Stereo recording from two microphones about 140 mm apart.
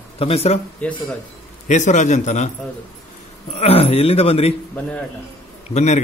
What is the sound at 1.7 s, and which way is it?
Speech, 60° left (ahead or behind).